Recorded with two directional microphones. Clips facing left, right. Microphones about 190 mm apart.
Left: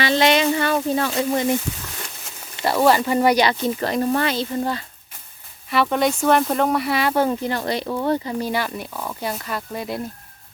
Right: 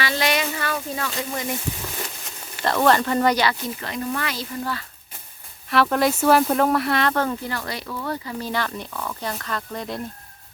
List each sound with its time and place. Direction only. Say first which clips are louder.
0.0 s a sound: left 6 dB; 25° left (ahead or behind)
2.6 s speech: left 2 dB; 5° left (ahead or behind)
3.8 s speech: left 7 dB; 35° left (ahead or behind)
5.7 s speech: even; centre (ahead or behind)
7.1 s speech: left 4 dB; 15° left (ahead or behind)
8.4 s speech: left 2 dB; 10° left (ahead or behind)